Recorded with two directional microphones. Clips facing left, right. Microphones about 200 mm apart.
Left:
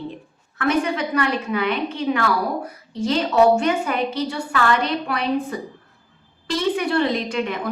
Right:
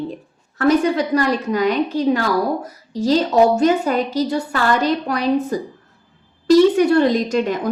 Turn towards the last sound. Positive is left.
turn(degrees=-40)  # may be behind; listen again after turning